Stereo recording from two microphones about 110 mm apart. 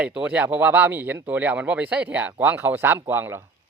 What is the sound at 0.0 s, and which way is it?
A man's voice, 10° right (ahead or behind).